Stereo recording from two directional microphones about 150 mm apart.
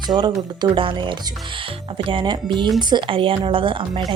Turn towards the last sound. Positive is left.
turn(degrees=-35)  # may be behind; listen again after turning